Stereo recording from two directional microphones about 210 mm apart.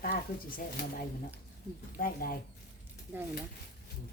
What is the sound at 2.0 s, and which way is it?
Speech, 45° left (ahead or behind).